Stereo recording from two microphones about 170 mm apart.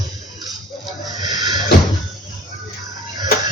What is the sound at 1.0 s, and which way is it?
Snake, 25° right (ahead or behind).